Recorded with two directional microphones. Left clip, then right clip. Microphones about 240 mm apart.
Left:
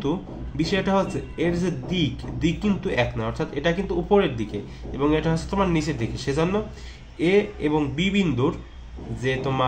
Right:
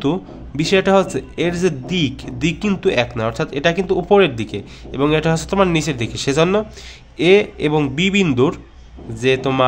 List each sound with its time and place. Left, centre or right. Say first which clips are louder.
0.0 s a man's voice: right 6 dB; right